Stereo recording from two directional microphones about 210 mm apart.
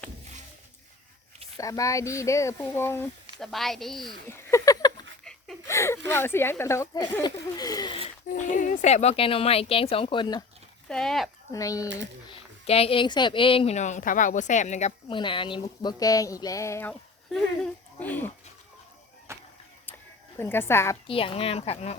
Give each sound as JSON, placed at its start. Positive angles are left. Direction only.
{"t": 1.5, "sound": "speech", "side_deg": 15}
{"t": 3.4, "sound": "speech", "side_deg": 0}
{"t": 4.3, "sound": "a sound", "side_deg": 15}
{"t": 5.2, "sound": "a sound", "side_deg": 5}
{"t": 6.1, "sound": "speech", "side_deg": 10}
{"t": 8.3, "sound": "speech", "side_deg": 35}
{"t": 10.8, "sound": "speech", "side_deg": 5}
{"t": 11.5, "sound": "speech", "side_deg": 15}
{"t": 19.3, "sound": "a sound", "side_deg": -15}
{"t": 20.4, "sound": "speech", "side_deg": 10}
{"t": 21.1, "sound": "speech", "side_deg": 25}